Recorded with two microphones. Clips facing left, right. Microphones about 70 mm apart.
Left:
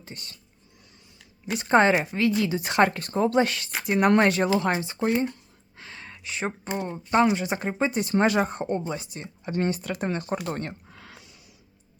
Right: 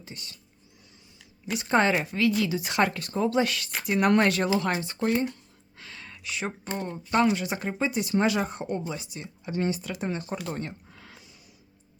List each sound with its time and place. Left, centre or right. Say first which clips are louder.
0.0 s speech: left 1 dB; left
1.5 s a woman's voice: left 4 dB; left
4.5 s a sound: left 2 dB; left
6.7 s speech: left 3 dB; centre; by 11.3 s left